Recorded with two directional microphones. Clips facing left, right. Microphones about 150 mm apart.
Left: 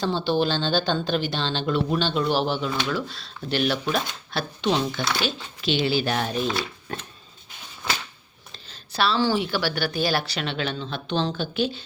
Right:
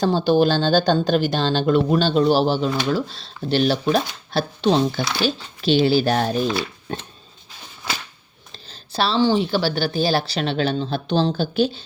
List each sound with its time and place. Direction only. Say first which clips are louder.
0.0 s speech: right 6 dB; 45° right (ahead or behind)
8.5 s speech: right 3 dB; 30° right (ahead or behind)